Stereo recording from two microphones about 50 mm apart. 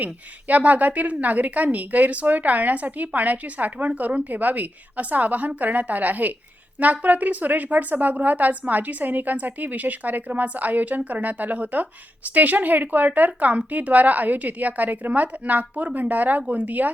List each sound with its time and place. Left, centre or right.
0.0 s a woman's voice: right